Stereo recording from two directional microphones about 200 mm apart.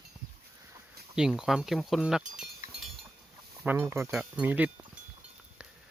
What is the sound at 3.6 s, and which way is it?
Speech, 10° right (ahead or behind).